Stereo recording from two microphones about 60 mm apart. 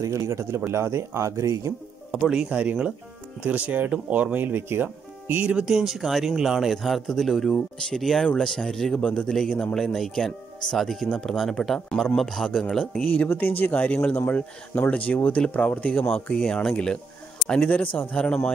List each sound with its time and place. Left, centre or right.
0.0 s a man's voice: right
2.5 s speech: right
5.6 s speech: centre
9.0 s speech: centre
9.9 s speech: centre
11.3 s speech: centre
12.4 s speech: centre
13.3 s speech: left
16.1 s speech: centre
17.6 s speech: left